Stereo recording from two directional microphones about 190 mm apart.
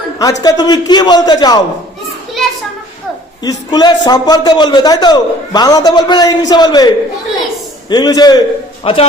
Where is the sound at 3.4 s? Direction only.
20° left (ahead or behind).